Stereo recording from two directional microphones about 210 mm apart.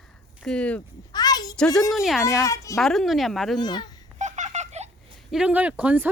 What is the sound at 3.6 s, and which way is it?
Speech, 20° left (ahead or behind).